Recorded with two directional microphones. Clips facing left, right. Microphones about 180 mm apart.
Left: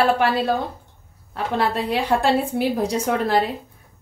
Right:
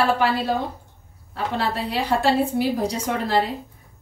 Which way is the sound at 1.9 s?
55° left (ahead or behind).